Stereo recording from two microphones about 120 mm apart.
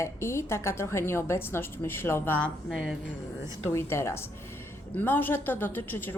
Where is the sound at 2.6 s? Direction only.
5° right (ahead or behind).